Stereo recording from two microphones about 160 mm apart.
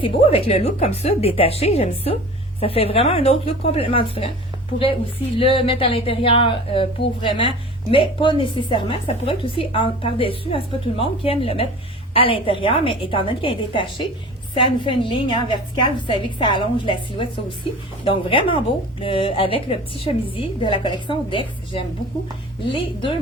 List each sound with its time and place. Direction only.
0.0 s a woman's voice: 35° left (ahead or behind)
5.4 s a woman's voice: 35° left (ahead or behind)